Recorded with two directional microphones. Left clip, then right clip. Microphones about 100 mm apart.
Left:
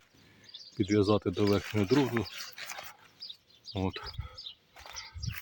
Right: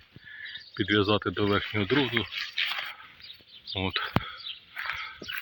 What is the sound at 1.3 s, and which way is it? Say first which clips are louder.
Speech: right 2 dB; 25° right (ahead or behind).